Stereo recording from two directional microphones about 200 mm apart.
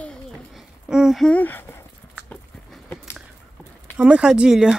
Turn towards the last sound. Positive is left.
turn(degrees=-5)  # may be behind; listen again after turning